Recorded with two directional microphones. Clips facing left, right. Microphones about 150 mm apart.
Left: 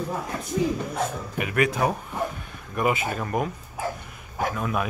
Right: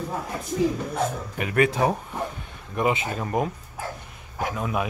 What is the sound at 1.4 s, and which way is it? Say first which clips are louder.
Speech: right 2 dB; 35° right (ahead or behind).